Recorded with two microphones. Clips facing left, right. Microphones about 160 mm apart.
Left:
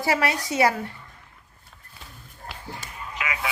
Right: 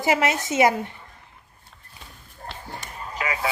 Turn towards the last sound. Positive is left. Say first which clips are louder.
# right 3 dB
turn(degrees=-35)  # may be behind; listen again after turning